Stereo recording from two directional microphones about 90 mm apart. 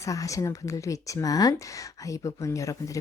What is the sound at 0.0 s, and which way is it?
Speech, 40° left (ahead or behind).